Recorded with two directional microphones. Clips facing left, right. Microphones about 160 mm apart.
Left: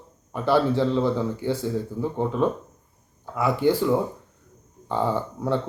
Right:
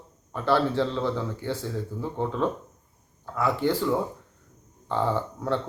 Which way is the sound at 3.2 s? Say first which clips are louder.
Left 3 dB; 10° left (ahead or behind).